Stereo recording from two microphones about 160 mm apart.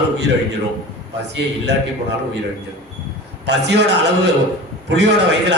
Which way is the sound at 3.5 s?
90° right.